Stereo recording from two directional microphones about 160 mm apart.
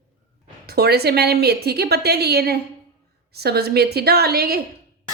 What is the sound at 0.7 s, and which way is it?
A woman's voice, 90° right.